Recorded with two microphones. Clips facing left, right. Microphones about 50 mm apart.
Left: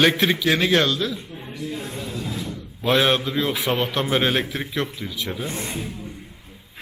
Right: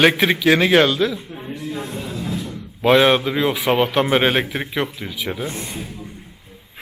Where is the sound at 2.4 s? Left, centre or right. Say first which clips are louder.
Right 5 dB; centre.